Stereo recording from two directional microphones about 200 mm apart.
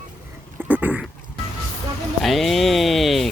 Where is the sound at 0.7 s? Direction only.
10° right (ahead or behind).